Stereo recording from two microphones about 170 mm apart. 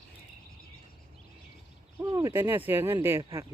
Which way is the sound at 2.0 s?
20° right (ahead or behind).